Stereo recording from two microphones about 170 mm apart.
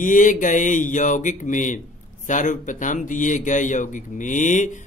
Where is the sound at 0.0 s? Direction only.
50° left (ahead or behind).